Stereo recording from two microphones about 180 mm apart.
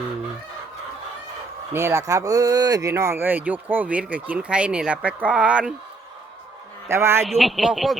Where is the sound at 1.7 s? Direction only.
15° right (ahead or behind).